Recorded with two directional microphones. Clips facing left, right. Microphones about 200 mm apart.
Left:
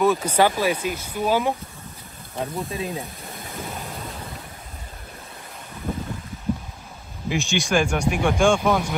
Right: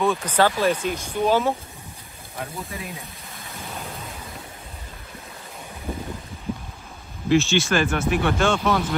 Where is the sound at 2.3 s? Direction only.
30° left (ahead or behind).